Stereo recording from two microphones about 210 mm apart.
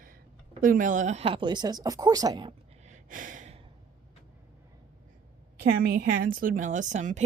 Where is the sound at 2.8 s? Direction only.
35° right (ahead or behind).